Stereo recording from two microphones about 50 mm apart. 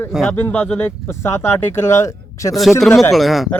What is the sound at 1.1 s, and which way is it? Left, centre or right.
Speech, left.